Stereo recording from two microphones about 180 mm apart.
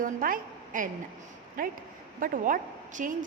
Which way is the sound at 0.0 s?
50° right (ahead or behind).